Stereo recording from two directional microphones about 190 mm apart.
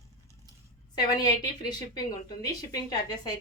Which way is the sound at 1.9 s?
20° left (ahead or behind).